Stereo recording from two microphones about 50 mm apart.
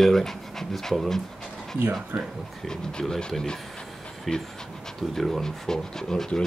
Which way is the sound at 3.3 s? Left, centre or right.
Centre.